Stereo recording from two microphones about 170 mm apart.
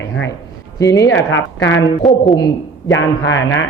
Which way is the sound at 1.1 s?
90° left.